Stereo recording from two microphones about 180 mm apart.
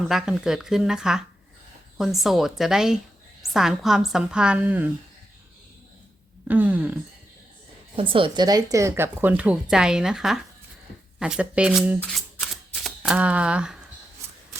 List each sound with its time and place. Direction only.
0.0 s a woman's voice: centre (ahead or behind)
6.5 s speech: 10° right (ahead or behind)
7.9 s speech: 30° right (ahead or behind); by 10.4 s 5° right (ahead or behind)
11.2 s camera: 5° right (ahead or behind)